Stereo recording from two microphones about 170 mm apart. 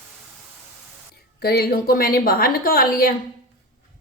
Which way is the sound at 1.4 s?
65° left (ahead or behind).